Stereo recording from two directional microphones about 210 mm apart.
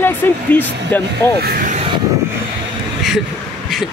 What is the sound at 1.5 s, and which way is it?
Vehicle, 40° right (ahead or behind).